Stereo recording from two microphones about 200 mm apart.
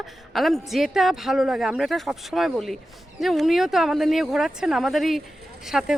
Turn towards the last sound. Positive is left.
turn(degrees=-5)  # may be behind; listen again after turning